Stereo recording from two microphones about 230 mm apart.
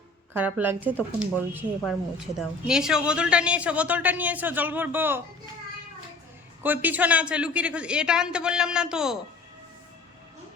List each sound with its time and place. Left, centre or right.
0.3 s a woman's voice: centre
6.6 s a woman's voice: centre